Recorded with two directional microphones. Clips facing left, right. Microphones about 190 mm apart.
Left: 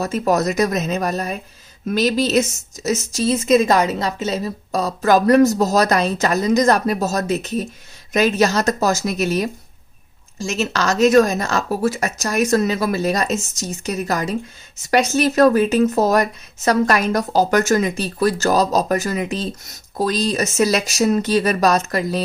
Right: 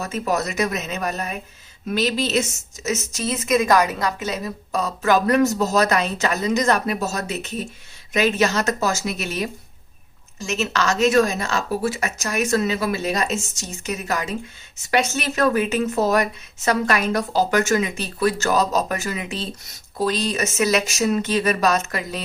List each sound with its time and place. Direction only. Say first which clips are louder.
0.0 s a woman's voice: left 5 dB; 40° left (ahead or behind)